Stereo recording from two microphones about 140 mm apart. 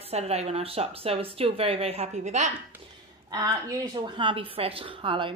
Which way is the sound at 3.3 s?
25° right (ahead or behind).